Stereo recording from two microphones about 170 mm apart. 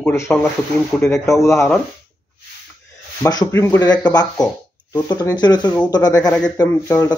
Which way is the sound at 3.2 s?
20° left (ahead or behind).